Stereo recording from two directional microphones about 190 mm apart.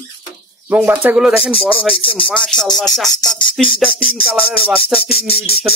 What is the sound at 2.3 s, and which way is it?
Speech, 5° left (ahead or behind).